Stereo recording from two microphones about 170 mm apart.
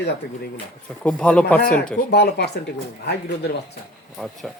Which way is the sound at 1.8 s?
75° left (ahead or behind).